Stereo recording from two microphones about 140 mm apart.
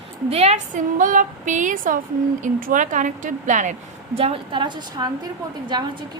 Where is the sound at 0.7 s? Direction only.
70° right (ahead or behind).